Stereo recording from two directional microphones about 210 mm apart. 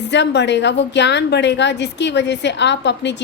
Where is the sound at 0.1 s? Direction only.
55° left (ahead or behind).